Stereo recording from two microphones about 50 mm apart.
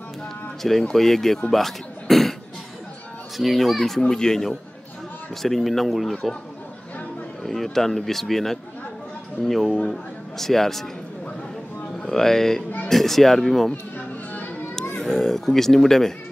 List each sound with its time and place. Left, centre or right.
0.6 s a man's voice: centre
1.5 s throat clearing: centre
3.3 s a man's voice: centre
7.4 s a man's voice: centre
12.0 s a man's voice: centre
13.9 s music: left
15.0 s speech: centre